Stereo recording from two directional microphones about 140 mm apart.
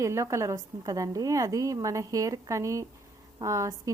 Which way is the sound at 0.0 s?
20° right (ahead or behind).